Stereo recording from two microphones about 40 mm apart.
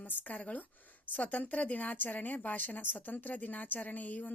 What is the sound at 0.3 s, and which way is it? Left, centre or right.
A woman's voice, left.